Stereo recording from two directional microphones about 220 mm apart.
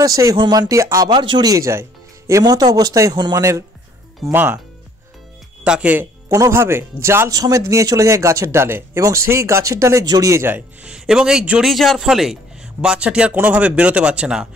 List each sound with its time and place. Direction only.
0.0 s speech: 15° right (ahead or behind)
5.6 s speech: 5° right (ahead or behind)